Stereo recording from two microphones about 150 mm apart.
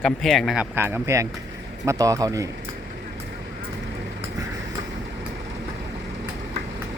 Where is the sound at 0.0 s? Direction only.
Centre (ahead or behind); by 2.5 s 25° right (ahead or behind).